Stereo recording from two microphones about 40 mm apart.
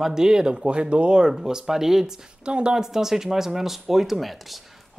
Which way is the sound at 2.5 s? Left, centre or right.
Right.